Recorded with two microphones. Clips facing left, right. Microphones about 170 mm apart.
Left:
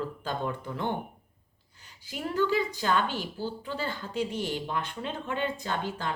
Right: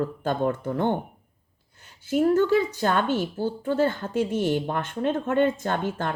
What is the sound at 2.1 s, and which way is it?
Speech, 50° right (ahead or behind).